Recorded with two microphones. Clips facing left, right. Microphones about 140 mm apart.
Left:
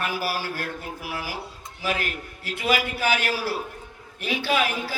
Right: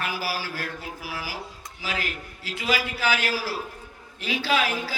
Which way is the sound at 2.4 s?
60° left (ahead or behind).